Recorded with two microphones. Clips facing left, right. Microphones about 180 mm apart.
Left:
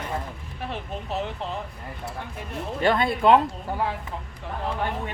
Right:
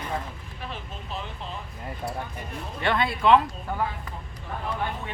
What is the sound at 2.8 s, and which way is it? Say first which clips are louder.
Speech: left 4 dB; 40° left (ahead or behind).